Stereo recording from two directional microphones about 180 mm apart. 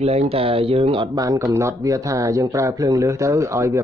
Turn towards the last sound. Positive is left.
turn(degrees=-15)  # may be behind; listen again after turning